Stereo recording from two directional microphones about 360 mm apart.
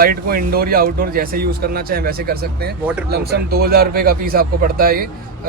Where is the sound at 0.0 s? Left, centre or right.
Right.